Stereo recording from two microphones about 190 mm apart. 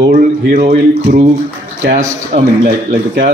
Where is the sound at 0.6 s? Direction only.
35° right (ahead or behind).